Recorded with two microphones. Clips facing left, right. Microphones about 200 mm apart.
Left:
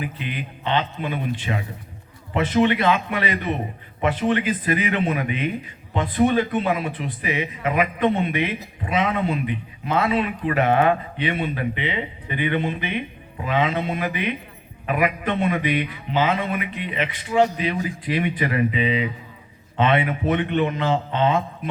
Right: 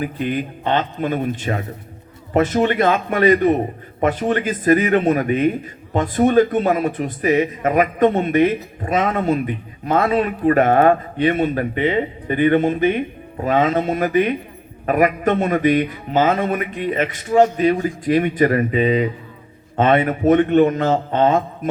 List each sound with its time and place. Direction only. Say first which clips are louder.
0.0 s speech: right 8 dB; 45° right (ahead or behind)